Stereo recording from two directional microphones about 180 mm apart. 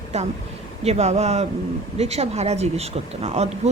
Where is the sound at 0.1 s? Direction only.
40° right (ahead or behind).